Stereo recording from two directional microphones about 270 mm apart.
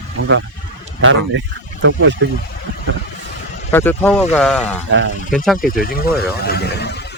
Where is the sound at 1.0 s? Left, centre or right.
Right.